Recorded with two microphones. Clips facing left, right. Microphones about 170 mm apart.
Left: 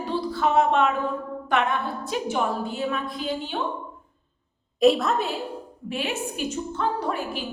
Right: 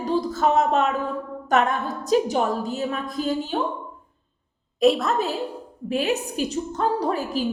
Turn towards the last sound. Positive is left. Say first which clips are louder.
# right 4 dB
turn(degrees=-40)  # may be behind; listen again after turning